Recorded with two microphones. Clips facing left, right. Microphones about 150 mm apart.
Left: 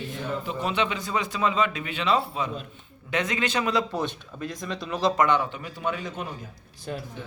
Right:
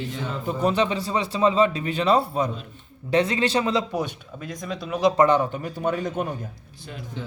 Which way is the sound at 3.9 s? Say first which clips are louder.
Right 1 dB; 5° right (ahead or behind).